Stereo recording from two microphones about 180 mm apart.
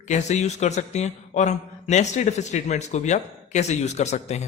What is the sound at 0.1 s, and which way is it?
A man's voice, 40° left (ahead or behind).